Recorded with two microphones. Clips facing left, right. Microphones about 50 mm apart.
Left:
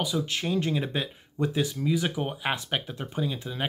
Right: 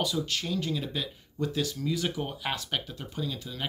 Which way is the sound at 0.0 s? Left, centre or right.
Centre.